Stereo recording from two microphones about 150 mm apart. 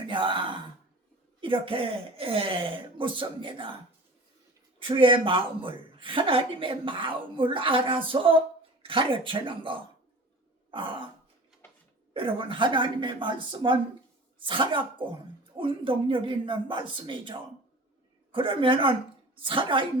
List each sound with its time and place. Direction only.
0.0 s gasp: 35° right (ahead or behind)
1.4 s a woman's voice: 35° right (ahead or behind)
4.8 s a woman's voice: 35° right (ahead or behind)
10.7 s throat clearing: 35° right (ahead or behind)
12.1 s a woman's voice: 35° right (ahead or behind)